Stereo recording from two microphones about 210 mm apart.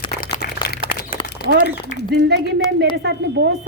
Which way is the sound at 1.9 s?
45° left (ahead or behind).